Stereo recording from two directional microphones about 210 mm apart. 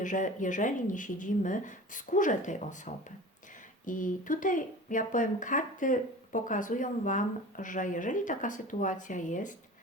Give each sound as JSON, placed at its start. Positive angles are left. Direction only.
{"t": 0.0, "sound": "speech", "side_deg": 35}